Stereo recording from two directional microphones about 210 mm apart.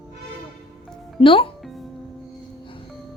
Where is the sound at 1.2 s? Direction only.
25° left (ahead or behind).